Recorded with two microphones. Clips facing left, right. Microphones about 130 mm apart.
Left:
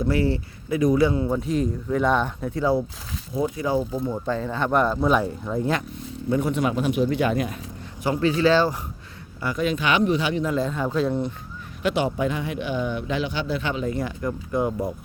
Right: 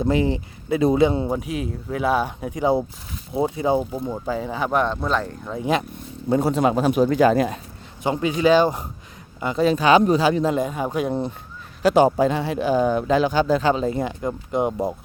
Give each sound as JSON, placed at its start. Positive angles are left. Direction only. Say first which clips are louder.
{"t": 0.1, "sound": "a man's voice", "louder": "right 2 dB", "side_deg": -20}
{"t": 1.4, "sound": "a man's voice", "louder": "left 3 dB", "side_deg": -10}
{"t": 3.9, "sound": "speech", "louder": "even", "side_deg": -10}
{"t": 5.0, "sound": "speech", "louder": "left 3 dB", "side_deg": 10}
{"t": 6.3, "sound": "speech", "louder": "right 4 dB", "side_deg": -35}
{"t": 8.0, "sound": "a man's voice", "louder": "right 1 dB", "side_deg": -20}
{"t": 9.6, "sound": "speech", "louder": "right 6 dB", "side_deg": -35}
{"t": 10.5, "sound": "speech", "louder": "right 1 dB", "side_deg": -15}
{"t": 11.8, "sound": "speech", "louder": "right 7 dB", "side_deg": -40}